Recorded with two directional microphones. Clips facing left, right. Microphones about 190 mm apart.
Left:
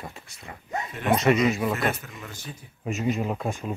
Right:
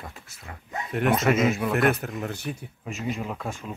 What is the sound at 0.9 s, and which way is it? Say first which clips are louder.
Speech: right 1 dB; 60° right (ahead or behind).